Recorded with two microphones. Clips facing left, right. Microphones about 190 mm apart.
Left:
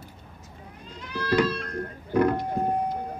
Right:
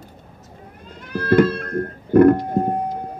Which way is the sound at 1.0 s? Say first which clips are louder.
Right 8 dB; 55° right (ahead or behind).